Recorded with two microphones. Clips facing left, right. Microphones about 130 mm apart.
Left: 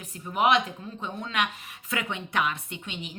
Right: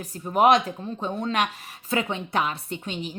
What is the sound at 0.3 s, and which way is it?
Speech, 40° right (ahead or behind).